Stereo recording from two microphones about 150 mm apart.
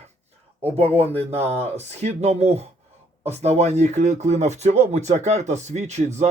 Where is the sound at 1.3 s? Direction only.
45° right (ahead or behind).